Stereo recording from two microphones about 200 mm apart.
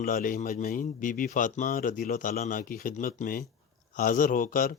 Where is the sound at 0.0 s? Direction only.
45° left (ahead or behind).